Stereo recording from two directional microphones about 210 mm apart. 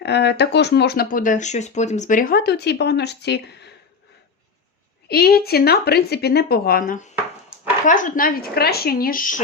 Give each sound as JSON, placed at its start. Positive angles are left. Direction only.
{"t": 0.0, "sound": "speech", "side_deg": 55}
{"t": 5.0, "sound": "speech", "side_deg": 50}